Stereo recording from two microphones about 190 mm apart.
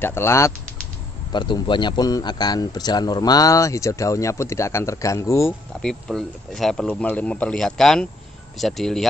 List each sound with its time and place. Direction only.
0.0 s speech: 15° left (ahead or behind)
1.3 s a man's voice: 25° left (ahead or behind)
5.8 s speech: 5° left (ahead or behind)